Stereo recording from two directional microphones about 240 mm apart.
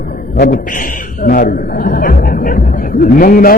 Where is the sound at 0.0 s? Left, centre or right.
Left.